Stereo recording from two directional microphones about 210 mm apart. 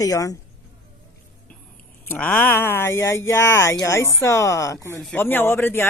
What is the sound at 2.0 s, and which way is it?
Speech, 10° left (ahead or behind).